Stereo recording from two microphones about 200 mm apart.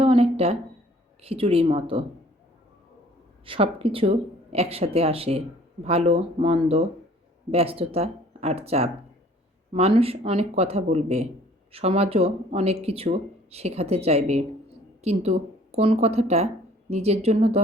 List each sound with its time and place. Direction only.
0.0 s a sound: 30° right (ahead or behind)
1.2 s speech: 30° right (ahead or behind)
3.4 s speech: 30° right (ahead or behind)